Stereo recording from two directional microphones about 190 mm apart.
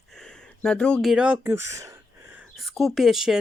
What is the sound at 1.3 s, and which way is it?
Speech, 15° right (ahead or behind).